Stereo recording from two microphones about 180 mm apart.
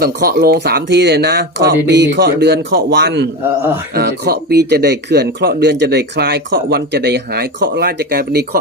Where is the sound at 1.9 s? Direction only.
75° right (ahead or behind).